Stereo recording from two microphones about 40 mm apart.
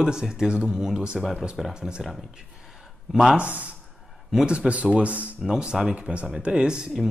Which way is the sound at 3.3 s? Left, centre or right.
Right.